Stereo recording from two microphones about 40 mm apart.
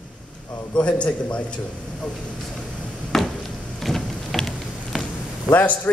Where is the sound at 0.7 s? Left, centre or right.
Left.